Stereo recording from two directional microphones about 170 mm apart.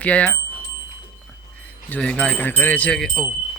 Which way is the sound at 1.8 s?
10° left (ahead or behind).